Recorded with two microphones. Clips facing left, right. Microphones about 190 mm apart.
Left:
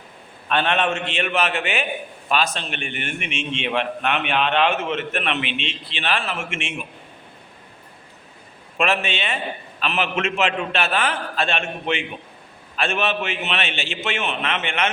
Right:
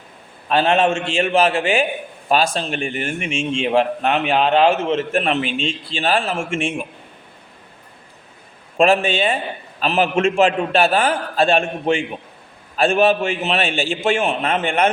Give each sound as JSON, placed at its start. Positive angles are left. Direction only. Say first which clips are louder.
{"t": 0.4, "sound": "a man's voice", "louder": "right 5 dB", "side_deg": -30}
{"t": 6.6, "sound": "a man's voice", "louder": "right 8 dB", "side_deg": -50}
{"t": 8.8, "sound": "a man's voice", "louder": "right 7 dB", "side_deg": -35}